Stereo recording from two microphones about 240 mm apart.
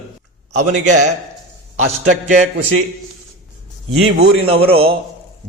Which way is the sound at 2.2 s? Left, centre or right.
Right.